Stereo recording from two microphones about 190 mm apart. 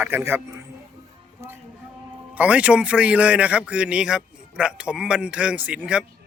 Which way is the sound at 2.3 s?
5° right (ahead or behind).